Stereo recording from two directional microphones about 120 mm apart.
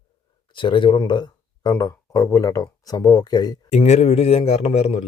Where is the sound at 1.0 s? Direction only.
35° left (ahead or behind).